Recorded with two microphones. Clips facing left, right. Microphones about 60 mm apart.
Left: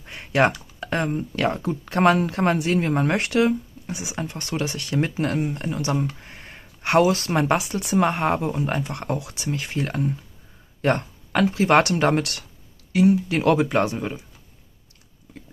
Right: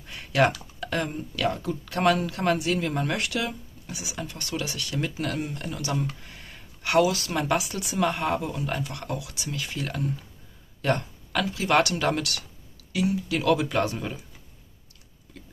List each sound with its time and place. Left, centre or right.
0.0 s speech: left